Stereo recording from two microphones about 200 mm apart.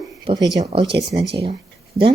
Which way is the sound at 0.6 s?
30° right (ahead or behind).